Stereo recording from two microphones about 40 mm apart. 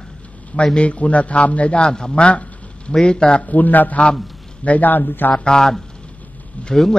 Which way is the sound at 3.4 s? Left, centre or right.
Left.